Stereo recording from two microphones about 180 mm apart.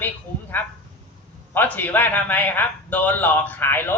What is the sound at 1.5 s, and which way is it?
A man's voice, 10° left (ahead or behind).